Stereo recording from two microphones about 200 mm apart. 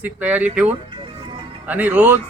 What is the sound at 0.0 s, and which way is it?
Speech, 10° right (ahead or behind).